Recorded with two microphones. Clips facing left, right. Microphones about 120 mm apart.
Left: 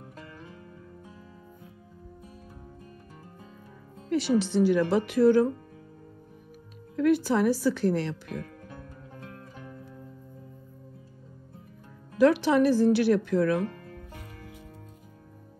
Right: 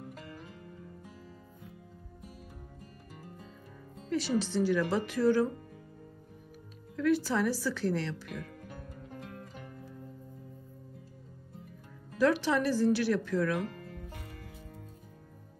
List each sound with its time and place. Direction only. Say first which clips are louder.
4.1 s speech: left 6 dB; 60° left (ahead or behind)
7.0 s speech: left 5 dB; 55° left (ahead or behind)
12.2 s speech: left 6 dB; 60° left (ahead or behind)